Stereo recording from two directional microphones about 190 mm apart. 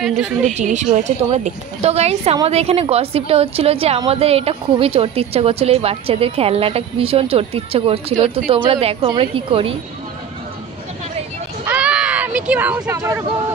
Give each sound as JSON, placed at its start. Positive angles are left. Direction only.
{"t": 0.0, "sound": "a woman's voice", "side_deg": 0}
{"t": 0.6, "sound": "a woman's voice", "side_deg": -40}
{"t": 11.6, "sound": "a sound", "side_deg": -5}